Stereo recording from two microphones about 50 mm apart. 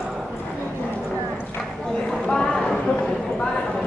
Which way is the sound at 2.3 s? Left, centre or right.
Centre.